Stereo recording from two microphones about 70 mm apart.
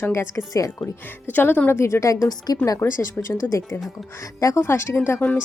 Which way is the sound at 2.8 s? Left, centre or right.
Left.